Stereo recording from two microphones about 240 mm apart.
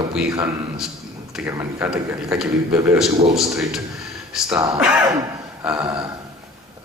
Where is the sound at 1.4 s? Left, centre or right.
Centre.